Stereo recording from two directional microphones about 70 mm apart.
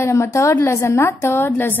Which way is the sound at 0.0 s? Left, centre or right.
Left.